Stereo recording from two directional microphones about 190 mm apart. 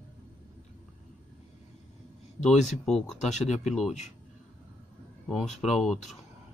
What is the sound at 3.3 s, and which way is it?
Speech, 40° left (ahead or behind).